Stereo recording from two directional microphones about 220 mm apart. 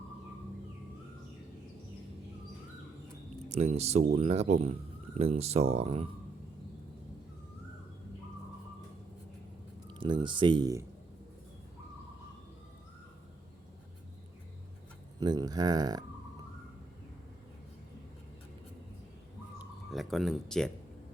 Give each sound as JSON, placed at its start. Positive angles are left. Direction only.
{"t": 3.5, "sound": "speech", "side_deg": -30}
{"t": 9.8, "sound": "speech", "side_deg": -20}
{"t": 15.2, "sound": "speech", "side_deg": -20}
{"t": 19.9, "sound": "speech", "side_deg": 0}